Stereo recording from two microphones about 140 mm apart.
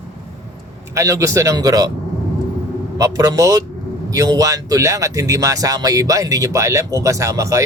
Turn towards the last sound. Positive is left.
turn(degrees=-20)  # may be behind; listen again after turning